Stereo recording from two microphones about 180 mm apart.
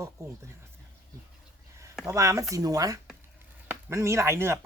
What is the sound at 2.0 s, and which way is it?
Speech, 15° right (ahead or behind).